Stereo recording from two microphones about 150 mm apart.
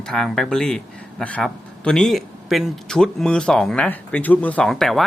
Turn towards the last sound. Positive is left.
turn(degrees=0)  # may be behind; listen again after turning